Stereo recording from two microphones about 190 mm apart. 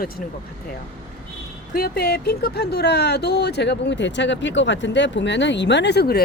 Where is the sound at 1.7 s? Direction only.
55° left (ahead or behind).